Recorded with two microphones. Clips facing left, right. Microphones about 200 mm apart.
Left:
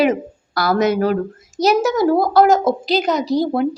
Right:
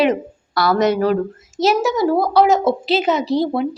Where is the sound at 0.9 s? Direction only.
45° left (ahead or behind).